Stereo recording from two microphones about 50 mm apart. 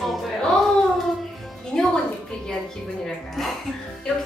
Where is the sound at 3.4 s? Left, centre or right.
Centre.